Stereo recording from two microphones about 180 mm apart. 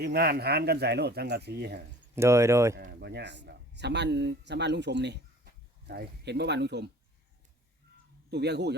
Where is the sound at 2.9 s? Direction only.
70° right (ahead or behind).